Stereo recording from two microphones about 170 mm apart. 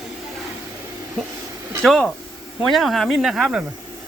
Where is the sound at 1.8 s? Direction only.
Centre (ahead or behind).